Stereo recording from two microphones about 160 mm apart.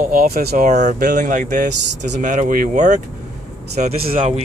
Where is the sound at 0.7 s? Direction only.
50° right (ahead or behind).